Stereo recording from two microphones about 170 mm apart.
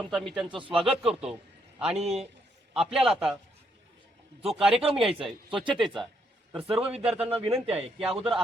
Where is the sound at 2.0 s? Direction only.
40° right (ahead or behind).